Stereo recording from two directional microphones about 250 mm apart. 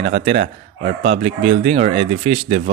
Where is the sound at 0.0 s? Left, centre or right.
Right.